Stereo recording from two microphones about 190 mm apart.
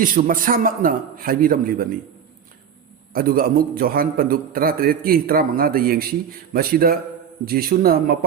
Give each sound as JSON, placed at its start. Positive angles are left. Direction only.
{"t": 0.0, "sound": "a man's voice", "side_deg": -50}
{"t": 3.1, "sound": "a man's voice", "side_deg": -50}